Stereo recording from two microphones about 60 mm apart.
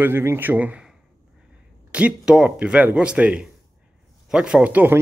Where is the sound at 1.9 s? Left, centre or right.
Right.